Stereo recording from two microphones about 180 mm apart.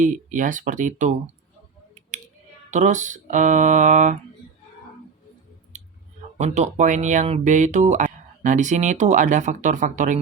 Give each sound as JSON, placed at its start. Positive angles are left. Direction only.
{"t": 0.0, "sound": "speech", "side_deg": -45}
{"t": 2.0, "sound": "a sound", "side_deg": -45}
{"t": 2.6, "sound": "speech", "side_deg": -40}
{"t": 6.3, "sound": "speech", "side_deg": -40}